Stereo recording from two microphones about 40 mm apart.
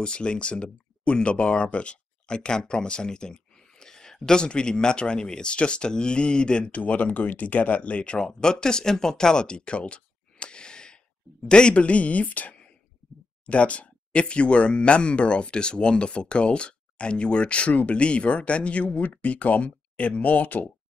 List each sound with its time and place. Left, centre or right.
0.0 s speech: left
6.7 s a woman's voice: left